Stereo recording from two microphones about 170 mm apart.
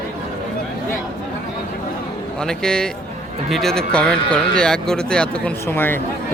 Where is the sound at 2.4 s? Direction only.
5° left (ahead or behind).